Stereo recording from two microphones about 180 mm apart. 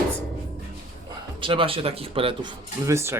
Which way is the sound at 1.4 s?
30° right (ahead or behind).